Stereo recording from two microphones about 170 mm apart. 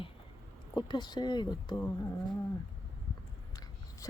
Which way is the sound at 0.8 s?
25° left (ahead or behind).